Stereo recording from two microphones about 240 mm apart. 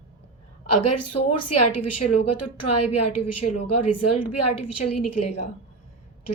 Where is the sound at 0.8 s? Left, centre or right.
Left.